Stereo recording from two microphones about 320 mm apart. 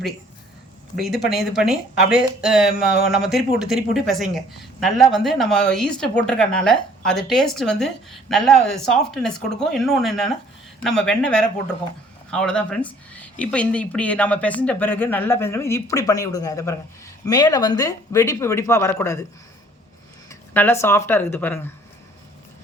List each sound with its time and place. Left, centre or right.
1.3 s speech: centre
2.0 s speech: left
2.4 s speech: centre
20.5 s speech: centre